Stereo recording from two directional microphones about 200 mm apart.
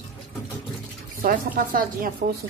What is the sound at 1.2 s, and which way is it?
Speech, 45° right (ahead or behind).